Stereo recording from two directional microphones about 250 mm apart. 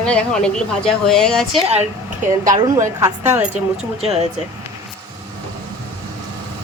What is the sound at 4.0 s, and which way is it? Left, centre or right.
Speech, right.